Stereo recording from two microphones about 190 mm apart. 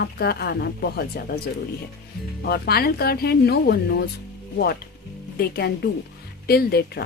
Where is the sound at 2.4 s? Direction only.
55° left (ahead or behind).